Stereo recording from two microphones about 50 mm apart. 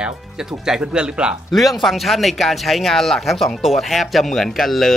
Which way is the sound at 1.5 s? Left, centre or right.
Centre.